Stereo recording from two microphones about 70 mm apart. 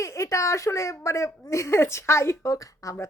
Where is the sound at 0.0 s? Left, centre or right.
Left.